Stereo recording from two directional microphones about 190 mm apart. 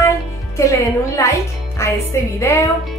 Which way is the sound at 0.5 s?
15° left (ahead or behind).